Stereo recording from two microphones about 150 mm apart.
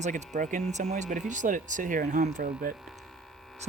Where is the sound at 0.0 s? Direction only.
55° right (ahead or behind); by 2.2 s 80° right.